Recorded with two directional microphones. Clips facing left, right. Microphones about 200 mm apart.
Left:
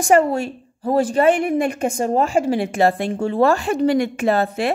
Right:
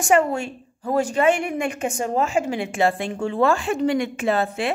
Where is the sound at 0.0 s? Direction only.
35° left (ahead or behind).